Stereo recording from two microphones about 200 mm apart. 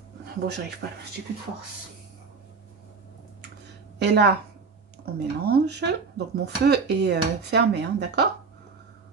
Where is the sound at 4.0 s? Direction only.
55° right (ahead or behind).